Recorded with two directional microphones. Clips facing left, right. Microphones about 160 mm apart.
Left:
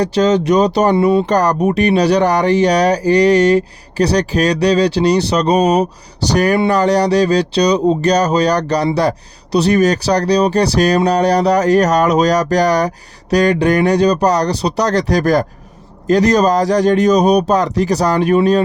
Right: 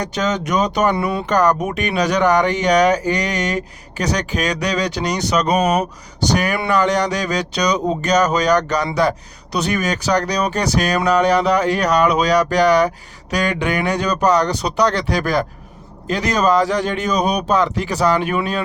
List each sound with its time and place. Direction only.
0.0 s speech: 30° left (ahead or behind)
1.3 s speech: 35° left (ahead or behind)